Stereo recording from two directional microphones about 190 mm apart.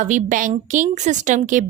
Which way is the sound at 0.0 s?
40° right (ahead or behind).